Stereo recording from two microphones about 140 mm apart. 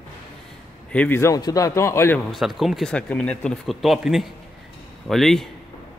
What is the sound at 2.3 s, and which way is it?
Speech, centre (ahead or behind).